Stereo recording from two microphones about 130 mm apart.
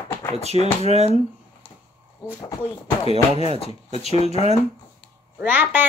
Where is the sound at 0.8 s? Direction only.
55° right (ahead or behind).